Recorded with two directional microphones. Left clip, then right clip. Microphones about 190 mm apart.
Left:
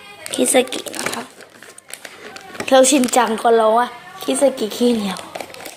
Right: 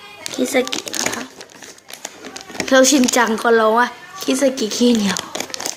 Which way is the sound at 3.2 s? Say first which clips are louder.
Even; 20° right (ahead or behind).